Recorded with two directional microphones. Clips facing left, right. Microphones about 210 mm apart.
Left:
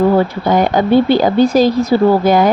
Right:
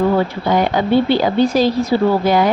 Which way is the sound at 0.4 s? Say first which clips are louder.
Left 3 dB; 45° left (ahead or behind).